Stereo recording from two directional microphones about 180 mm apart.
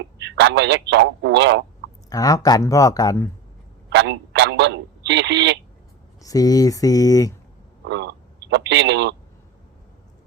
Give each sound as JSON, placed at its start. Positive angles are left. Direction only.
{"t": 0.3, "sound": "a man's voice", "side_deg": -75}
{"t": 2.0, "sound": "speech", "side_deg": 20}
{"t": 3.8, "sound": "speech", "side_deg": -75}
{"t": 6.2, "sound": "speech", "side_deg": 20}
{"t": 7.9, "sound": "speech", "side_deg": -75}